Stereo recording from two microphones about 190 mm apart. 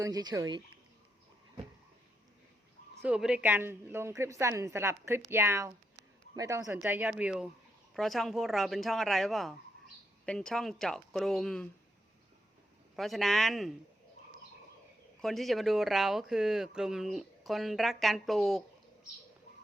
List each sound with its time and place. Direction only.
0.0 s speech: 20° right (ahead or behind)
3.0 s a woman's voice: 5° right (ahead or behind)
13.0 s speech: centre (ahead or behind)
15.2 s speech: centre (ahead or behind)